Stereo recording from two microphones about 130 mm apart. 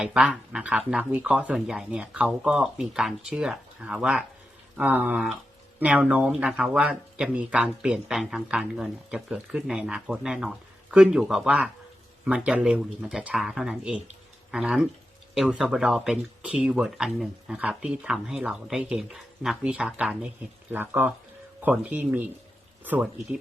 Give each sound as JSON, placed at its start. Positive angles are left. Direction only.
{"t": 0.0, "sound": "speech", "side_deg": -5}